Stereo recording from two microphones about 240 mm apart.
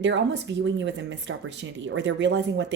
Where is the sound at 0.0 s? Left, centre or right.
Right.